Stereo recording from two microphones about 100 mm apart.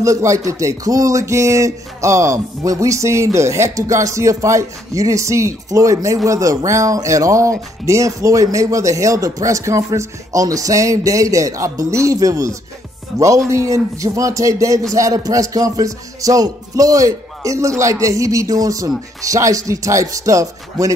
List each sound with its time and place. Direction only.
0.0 s speech: 30° right (ahead or behind)